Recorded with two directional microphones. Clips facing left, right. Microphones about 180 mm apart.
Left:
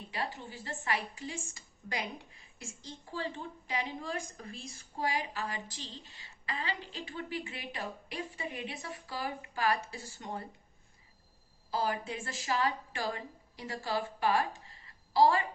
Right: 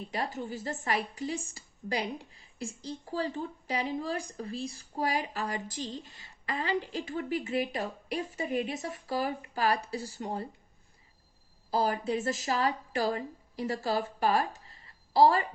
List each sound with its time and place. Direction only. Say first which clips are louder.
0.1 s a woman's voice: right 4 dB; 40° right (ahead or behind)
11.7 s a woman's voice: right 5 dB; 40° right (ahead or behind)